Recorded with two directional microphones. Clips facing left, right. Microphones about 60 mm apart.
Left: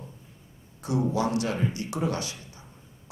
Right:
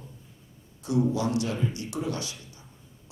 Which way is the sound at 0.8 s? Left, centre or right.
Left.